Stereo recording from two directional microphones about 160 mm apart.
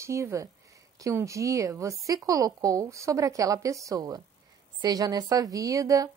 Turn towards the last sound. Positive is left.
turn(degrees=-20)  # may be behind; listen again after turning